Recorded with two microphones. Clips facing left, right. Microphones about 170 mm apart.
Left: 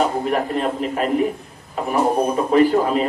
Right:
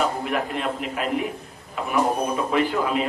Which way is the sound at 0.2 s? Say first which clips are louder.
Left 5 dB; 40° left (ahead or behind).